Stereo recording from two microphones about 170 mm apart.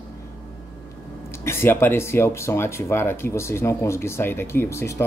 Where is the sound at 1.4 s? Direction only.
15° left (ahead or behind).